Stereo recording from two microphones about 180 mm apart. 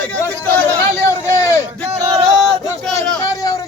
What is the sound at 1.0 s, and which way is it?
Speech, 15° left (ahead or behind).